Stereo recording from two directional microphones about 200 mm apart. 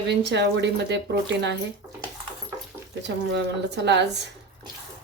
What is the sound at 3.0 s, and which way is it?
Speech, 60° right (ahead or behind).